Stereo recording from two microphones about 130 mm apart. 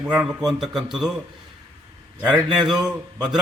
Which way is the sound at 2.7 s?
5° right (ahead or behind).